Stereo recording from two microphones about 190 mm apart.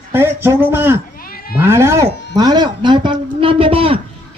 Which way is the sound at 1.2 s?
50° left (ahead or behind).